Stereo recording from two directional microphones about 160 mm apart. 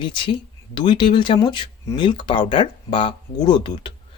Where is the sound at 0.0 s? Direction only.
30° left (ahead or behind).